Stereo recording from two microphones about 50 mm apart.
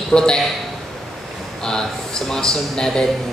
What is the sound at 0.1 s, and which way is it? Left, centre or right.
Speech, centre.